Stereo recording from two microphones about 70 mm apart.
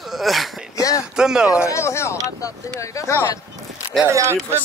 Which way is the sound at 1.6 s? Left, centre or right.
Left.